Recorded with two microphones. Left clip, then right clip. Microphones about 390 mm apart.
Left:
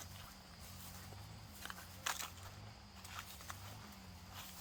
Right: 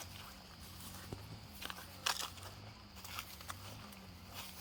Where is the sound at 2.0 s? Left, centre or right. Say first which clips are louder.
Right 4 dB; right.